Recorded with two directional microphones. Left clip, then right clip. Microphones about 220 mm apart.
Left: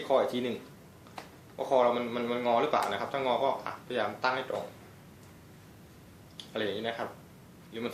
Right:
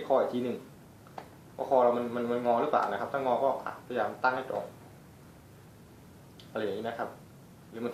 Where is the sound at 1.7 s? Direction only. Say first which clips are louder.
Right 1 dB; 10° left (ahead or behind).